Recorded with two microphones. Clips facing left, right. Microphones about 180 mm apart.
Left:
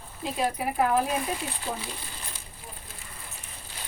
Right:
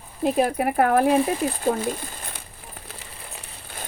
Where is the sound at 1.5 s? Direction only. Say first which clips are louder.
Right 11 dB; 50° right (ahead or behind).